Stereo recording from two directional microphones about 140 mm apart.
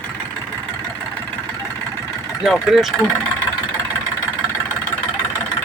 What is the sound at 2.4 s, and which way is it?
Speech, centre (ahead or behind).